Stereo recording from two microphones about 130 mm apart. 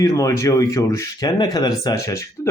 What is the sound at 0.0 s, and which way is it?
A man's voice, 25° left (ahead or behind).